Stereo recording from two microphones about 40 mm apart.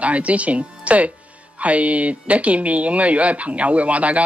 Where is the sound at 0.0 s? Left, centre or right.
Right.